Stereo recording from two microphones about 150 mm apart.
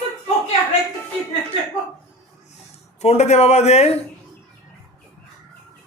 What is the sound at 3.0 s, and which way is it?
Speech, 45° left (ahead or behind).